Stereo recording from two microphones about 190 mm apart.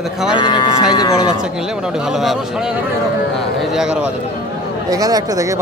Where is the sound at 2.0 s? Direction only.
Centre (ahead or behind).